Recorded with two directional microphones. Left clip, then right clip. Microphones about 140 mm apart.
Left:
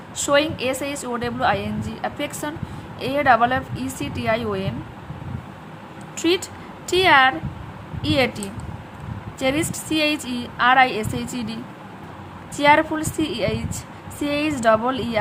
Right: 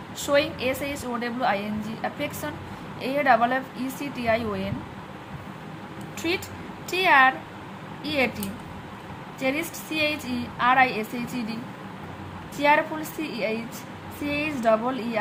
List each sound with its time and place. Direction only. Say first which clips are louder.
0.3 s a woman's voice: left 4 dB; 45° left (ahead or behind)
6.1 s a woman's voice: left 7 dB; 55° left (ahead or behind)
9.4 s a woman's voice: left 5 dB; 55° left (ahead or behind)
12.5 s a woman's voice: left 5 dB; 50° left (ahead or behind)